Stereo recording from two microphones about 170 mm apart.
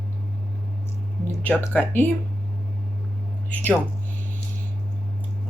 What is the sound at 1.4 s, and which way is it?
Speech, 10° left (ahead or behind).